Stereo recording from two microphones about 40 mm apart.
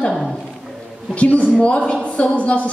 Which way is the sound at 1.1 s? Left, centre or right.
Left.